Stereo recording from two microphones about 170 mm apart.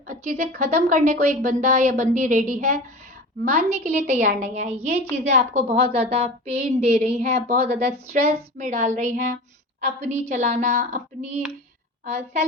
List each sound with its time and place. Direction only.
0.1 s a woman's voice: 55° right (ahead or behind)